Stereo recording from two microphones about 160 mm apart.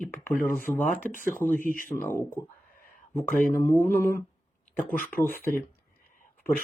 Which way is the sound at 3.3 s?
60° left (ahead or behind).